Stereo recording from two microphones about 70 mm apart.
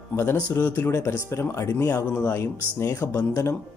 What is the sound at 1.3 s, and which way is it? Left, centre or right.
A man's voice, left.